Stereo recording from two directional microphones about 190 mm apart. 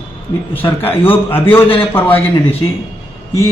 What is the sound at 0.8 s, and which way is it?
Speech, 10° left (ahead or behind).